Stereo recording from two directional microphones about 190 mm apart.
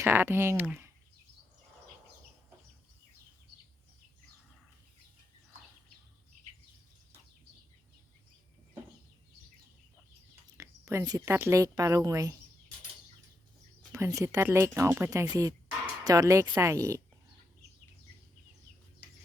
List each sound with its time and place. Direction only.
0.0 s speech: 10° right (ahead or behind)
10.6 s speech: 15° right (ahead or behind)
13.9 s speech: 15° right (ahead or behind)